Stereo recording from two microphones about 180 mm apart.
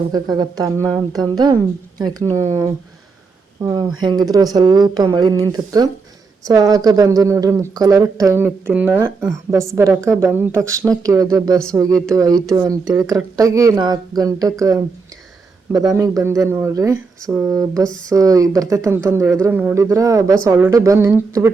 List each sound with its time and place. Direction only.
0.1 s speech: 20° right (ahead or behind)
2.3 s speech: 15° right (ahead or behind)